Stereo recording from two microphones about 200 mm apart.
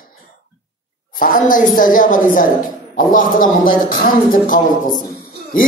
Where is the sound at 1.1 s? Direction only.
45° left (ahead or behind).